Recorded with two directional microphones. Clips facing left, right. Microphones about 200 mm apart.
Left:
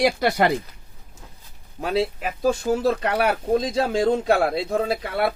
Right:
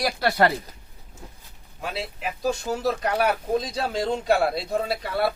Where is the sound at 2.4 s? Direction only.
50° left (ahead or behind).